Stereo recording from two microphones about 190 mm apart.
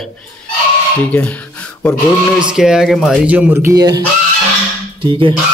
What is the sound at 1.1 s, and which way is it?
Speech, 5° left (ahead or behind).